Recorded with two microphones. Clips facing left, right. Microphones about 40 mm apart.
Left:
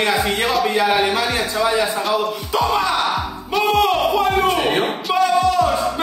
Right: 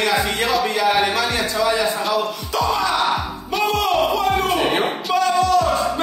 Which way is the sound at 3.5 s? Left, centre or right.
Centre.